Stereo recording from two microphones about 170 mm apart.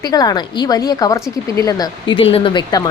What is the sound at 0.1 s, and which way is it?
Speech, 25° left (ahead or behind).